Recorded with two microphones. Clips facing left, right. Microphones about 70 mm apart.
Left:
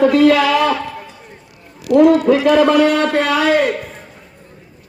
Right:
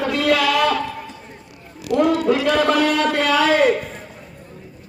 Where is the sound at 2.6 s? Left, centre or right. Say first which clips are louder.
Left 5 dB; centre.